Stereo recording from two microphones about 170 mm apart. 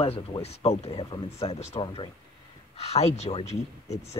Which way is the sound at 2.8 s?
40° left (ahead or behind).